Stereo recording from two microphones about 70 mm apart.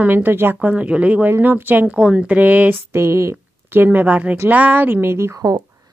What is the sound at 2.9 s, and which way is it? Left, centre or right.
A woman's voice, right.